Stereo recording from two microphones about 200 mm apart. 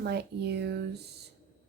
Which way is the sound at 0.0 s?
55° right (ahead or behind).